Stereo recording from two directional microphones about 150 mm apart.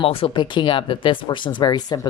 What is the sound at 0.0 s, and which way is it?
Speech, 35° left (ahead or behind).